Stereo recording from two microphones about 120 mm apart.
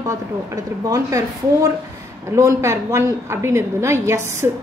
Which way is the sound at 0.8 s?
30° right (ahead or behind).